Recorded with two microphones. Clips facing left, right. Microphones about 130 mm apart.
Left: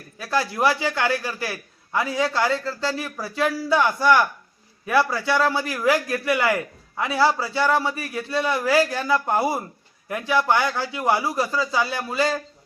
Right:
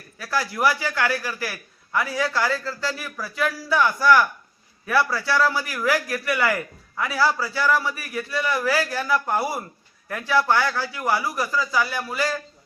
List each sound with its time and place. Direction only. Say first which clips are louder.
0.2 s a man's voice: left 1 dB; 25° left (ahead or behind)